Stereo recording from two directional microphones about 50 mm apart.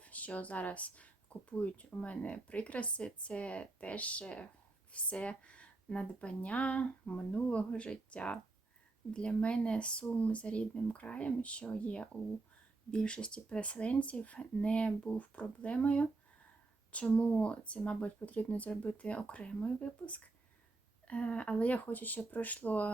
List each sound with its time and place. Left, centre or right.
0.0 s speech: left